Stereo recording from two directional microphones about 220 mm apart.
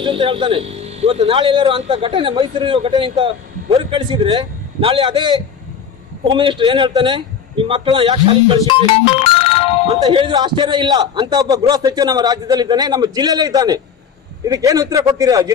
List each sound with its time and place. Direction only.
0.0 s a man's voice: 20° right (ahead or behind)
8.6 s music: 25° left (ahead or behind)
10.0 s a man's voice: 20° right (ahead or behind)